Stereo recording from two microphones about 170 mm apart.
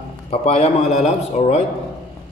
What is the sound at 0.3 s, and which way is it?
A man's voice, 35° left (ahead or behind).